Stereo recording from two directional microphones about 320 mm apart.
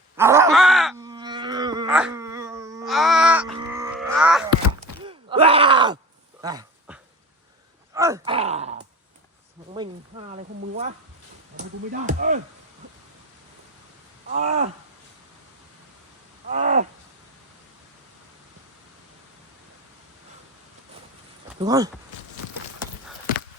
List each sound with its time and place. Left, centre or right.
0.2 s groan: centre
1.0 s a sound: centre
5.0 s groan: centre
6.4 s dog: centre
7.9 s groan: centre
9.7 s a sound: centre
11.9 s speech: right
14.3 s a sound: right
16.5 s wild animals: right
21.6 s speech: centre